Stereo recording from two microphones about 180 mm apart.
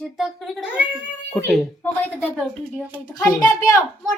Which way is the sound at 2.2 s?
5° right (ahead or behind).